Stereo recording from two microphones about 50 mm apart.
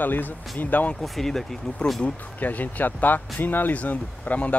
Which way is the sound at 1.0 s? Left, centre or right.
Centre.